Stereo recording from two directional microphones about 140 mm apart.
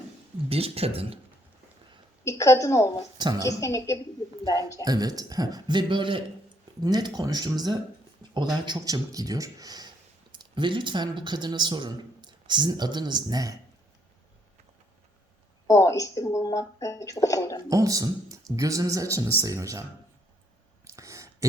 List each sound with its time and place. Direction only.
0.4 s speech: 45° right (ahead or behind)
2.2 s speech: 20° left (ahead or behind)
3.2 s a woman's voice: 30° right (ahead or behind)
3.4 s speech: 25° left (ahead or behind)
4.8 s speech: 25° right (ahead or behind)
8.2 s a sound: 35° right (ahead or behind)
8.6 s speech: 30° right (ahead or behind)
15.6 s speech: 20° left (ahead or behind)
17.7 s speech: 25° right (ahead or behind)
20.8 s a sound: 20° right (ahead or behind)